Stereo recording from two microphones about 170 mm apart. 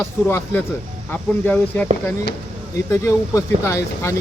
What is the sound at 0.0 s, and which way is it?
Speech, 15° left (ahead or behind).